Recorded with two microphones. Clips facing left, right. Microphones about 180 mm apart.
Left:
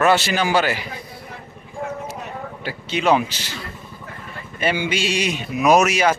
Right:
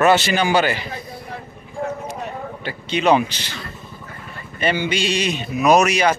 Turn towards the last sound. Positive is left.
turn(degrees=5)  # may be behind; listen again after turning